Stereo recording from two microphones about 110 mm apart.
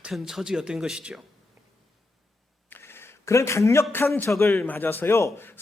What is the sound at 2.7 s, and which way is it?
Speech, 20° left (ahead or behind).